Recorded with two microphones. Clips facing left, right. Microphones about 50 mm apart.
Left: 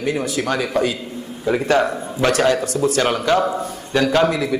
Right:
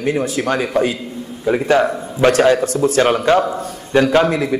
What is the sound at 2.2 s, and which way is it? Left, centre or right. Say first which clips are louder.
A man's voice: right 5 dB; right.